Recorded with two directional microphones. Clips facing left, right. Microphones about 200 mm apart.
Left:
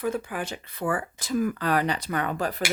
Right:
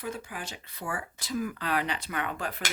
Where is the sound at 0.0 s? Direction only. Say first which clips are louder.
Left 8 dB; 60° left (ahead or behind).